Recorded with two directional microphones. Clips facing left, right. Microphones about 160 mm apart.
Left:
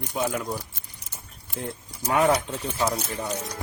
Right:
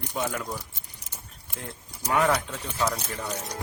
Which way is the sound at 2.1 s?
20° left (ahead or behind).